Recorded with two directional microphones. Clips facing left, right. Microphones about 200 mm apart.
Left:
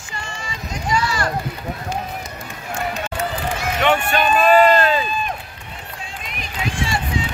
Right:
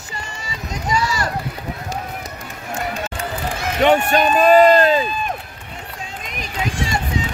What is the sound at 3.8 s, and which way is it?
A man's voice, 40° right (ahead or behind).